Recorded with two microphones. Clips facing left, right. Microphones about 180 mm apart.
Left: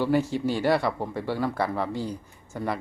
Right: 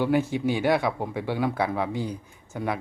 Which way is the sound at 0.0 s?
Centre (ahead or behind).